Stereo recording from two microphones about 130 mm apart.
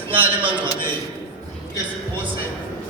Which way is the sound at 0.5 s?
40° right (ahead or behind).